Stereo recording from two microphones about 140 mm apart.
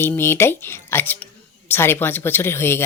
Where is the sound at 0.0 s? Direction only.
15° left (ahead or behind).